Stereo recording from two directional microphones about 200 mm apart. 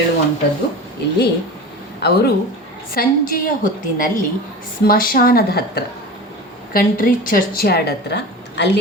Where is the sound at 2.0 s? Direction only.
55° left (ahead or behind).